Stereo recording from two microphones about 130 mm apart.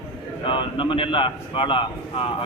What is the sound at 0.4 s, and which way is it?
A man's voice, 40° left (ahead or behind).